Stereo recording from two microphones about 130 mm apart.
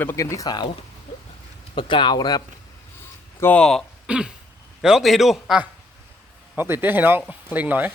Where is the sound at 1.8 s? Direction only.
40° left (ahead or behind).